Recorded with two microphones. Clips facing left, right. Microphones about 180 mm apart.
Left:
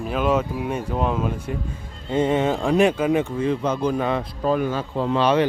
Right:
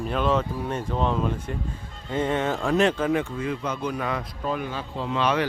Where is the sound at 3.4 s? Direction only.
30° left (ahead or behind).